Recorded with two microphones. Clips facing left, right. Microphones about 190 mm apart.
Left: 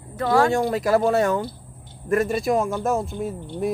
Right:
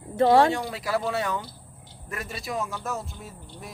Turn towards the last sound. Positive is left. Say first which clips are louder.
# left 16 dB
turn(degrees=55)  # may be behind; listen again after turning